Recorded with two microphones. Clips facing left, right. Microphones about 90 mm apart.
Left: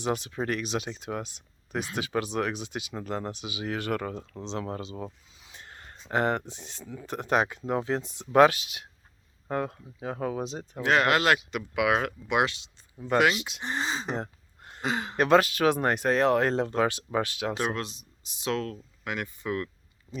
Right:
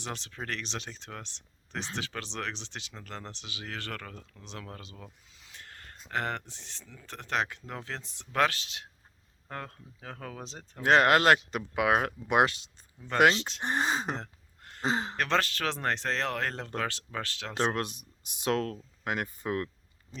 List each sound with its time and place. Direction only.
0.0 s speech: 15° left (ahead or behind)
4.1 s speech: 30° left (ahead or behind)
5.3 s a sound: 20° left (ahead or behind)
6.1 s speech: 20° left (ahead or behind)
10.8 s speech: 45° right (ahead or behind)
13.1 s speech: 10° left (ahead or behind)
13.6 s speech: 50° right (ahead or behind)
14.2 s a sound: 20° left (ahead or behind)
14.8 s speech: 30° right (ahead or behind)
15.1 s speech: 15° left (ahead or behind)
17.7 s speech: 50° right (ahead or behind)